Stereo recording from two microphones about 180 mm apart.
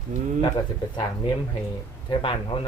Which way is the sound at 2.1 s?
30° left (ahead or behind).